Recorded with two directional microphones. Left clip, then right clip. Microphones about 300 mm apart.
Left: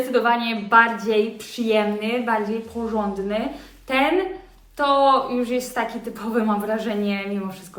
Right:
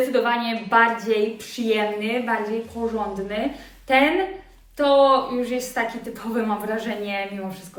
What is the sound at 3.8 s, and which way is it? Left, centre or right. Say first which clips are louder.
A woman's voice: right 2 dB; centre.